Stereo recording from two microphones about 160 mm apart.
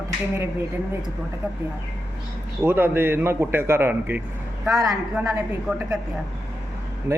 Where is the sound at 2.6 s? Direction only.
15° right (ahead or behind).